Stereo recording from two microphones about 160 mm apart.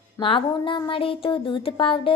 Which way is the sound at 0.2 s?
30° left (ahead or behind).